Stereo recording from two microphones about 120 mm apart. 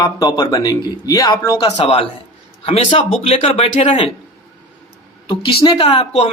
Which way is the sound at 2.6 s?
50° left (ahead or behind).